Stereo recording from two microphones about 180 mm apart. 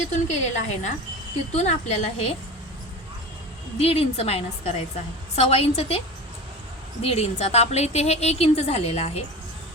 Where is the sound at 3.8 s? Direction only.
35° left (ahead or behind).